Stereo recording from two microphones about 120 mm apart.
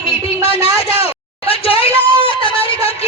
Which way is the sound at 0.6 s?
55° left (ahead or behind).